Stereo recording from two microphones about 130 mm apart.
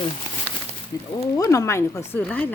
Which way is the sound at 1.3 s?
25° left (ahead or behind).